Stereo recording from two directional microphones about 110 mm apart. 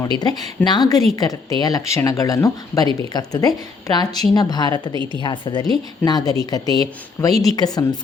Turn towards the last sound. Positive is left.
turn(degrees=35)  # may be behind; listen again after turning